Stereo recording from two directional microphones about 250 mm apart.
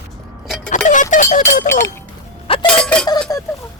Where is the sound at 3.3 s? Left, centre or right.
Centre.